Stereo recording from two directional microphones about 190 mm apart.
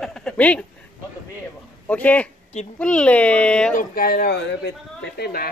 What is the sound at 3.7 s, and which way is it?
Speech, 50° left (ahead or behind).